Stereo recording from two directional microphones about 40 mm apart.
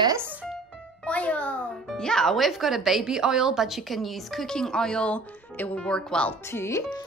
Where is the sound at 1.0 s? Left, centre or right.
Left.